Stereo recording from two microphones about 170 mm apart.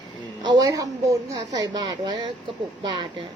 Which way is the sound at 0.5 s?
20° right (ahead or behind).